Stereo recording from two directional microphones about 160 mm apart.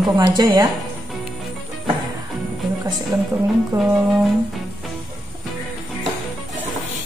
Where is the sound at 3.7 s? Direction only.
20° right (ahead or behind).